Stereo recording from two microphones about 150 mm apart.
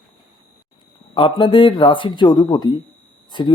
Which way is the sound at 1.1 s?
35° left (ahead or behind).